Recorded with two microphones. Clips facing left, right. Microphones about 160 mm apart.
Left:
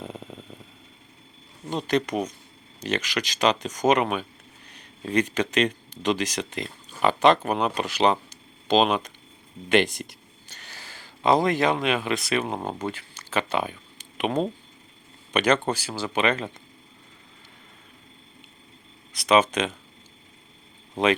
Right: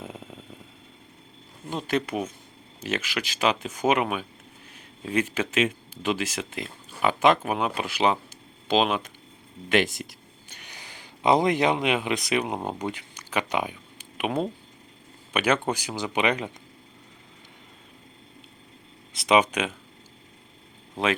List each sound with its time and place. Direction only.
0.0 s a sound: 5° right (ahead or behind)
1.7 s speech: 5° right (ahead or behind)
10.5 s speech: 15° right (ahead or behind)
19.1 s speech: 20° right (ahead or behind)